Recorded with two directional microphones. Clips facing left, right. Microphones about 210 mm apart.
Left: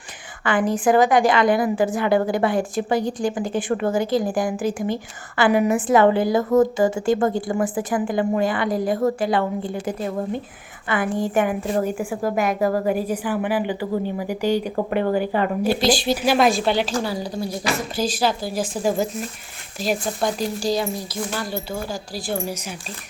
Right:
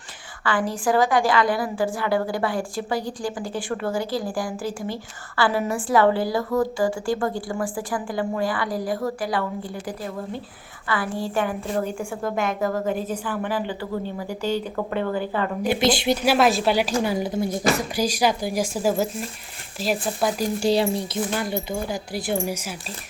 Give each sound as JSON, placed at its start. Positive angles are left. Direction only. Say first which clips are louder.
{"t": 0.4, "sound": "a woman's voice", "louder": "left 4 dB", "side_deg": 20}
{"t": 15.6, "sound": "speech", "louder": "right 1 dB", "side_deg": -20}
{"t": 16.2, "sound": "a woman's voice", "louder": "left 1 dB", "side_deg": -5}
{"t": 20.6, "sound": "speech", "louder": "right 2 dB", "side_deg": -30}